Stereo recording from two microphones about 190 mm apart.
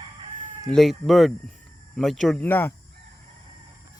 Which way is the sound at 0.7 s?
Centre (ahead or behind).